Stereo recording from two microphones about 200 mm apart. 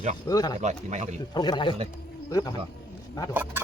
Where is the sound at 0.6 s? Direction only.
35° right (ahead or behind).